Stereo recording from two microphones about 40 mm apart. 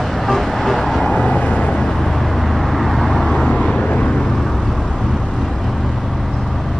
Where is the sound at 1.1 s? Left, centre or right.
Left.